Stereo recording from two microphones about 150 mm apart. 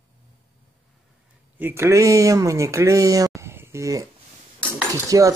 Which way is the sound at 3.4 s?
15° right (ahead or behind).